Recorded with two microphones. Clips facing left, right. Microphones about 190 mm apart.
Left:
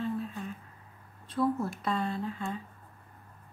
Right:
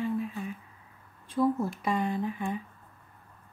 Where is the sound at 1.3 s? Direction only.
15° right (ahead or behind).